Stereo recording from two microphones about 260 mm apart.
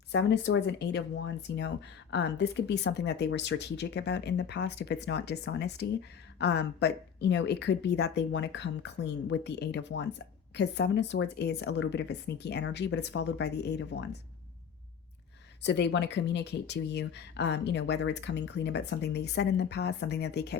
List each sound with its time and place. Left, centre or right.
0.1 s speech: left
15.6 s speech: left